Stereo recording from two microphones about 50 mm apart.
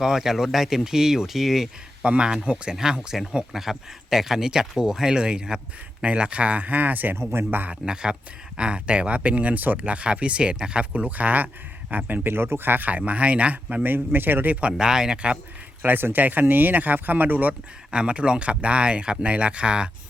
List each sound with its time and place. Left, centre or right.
0.0 s speech: centre
2.0 s speech: centre; by 7.7 s right
7.7 s speech: centre
13.8 s a man's voice: right
14.8 s speech: centre
15.8 s speech: right
17.9 s speech: right